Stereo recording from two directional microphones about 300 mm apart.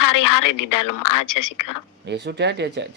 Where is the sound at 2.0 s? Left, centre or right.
Right.